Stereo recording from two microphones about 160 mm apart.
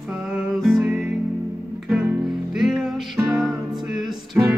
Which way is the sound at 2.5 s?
Centre (ahead or behind).